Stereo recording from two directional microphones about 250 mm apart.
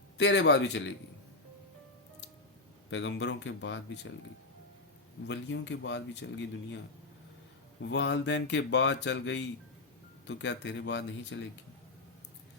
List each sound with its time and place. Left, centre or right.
0.2 s speech: left
2.9 s speech: left
5.3 s speech: left
7.8 s speech: left